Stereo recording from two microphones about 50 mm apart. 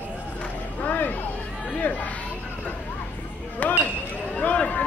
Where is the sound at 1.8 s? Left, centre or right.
Left.